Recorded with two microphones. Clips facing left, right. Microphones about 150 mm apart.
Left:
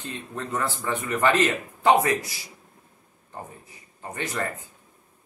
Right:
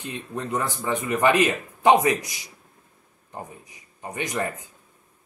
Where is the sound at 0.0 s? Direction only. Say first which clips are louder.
Right 2 dB; 15° right (ahead or behind).